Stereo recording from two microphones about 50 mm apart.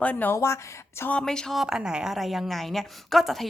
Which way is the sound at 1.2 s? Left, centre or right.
Centre.